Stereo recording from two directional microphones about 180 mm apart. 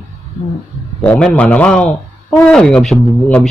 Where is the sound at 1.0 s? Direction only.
5° left (ahead or behind).